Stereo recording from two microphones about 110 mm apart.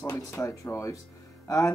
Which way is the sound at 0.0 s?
25° left (ahead or behind).